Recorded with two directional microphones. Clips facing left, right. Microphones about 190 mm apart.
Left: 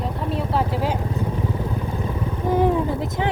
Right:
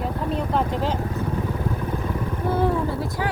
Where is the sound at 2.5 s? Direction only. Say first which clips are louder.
Left 3 dB; 15° left (ahead or behind).